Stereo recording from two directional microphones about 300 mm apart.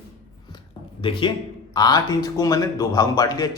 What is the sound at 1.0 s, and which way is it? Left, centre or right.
Speech, centre.